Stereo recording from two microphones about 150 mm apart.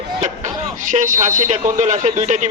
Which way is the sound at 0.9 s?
60° right (ahead or behind).